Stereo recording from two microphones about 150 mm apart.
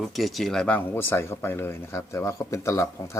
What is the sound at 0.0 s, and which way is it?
Speech, centre (ahead or behind).